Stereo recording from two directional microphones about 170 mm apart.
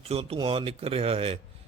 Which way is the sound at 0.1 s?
35° right (ahead or behind).